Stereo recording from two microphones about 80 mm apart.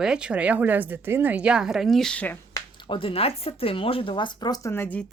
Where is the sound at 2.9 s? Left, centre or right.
Left.